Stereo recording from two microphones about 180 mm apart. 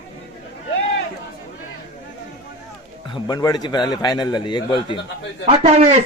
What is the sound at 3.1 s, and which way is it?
A man's voice, 25° left (ahead or behind).